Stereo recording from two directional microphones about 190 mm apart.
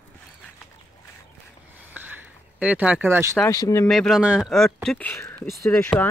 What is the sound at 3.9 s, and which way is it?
Speech, centre (ahead or behind).